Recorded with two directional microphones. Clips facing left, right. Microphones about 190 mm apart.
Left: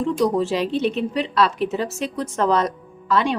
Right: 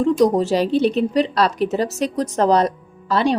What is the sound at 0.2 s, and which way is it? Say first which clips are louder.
A woman's voice: right 4 dB; 40° right (ahead or behind).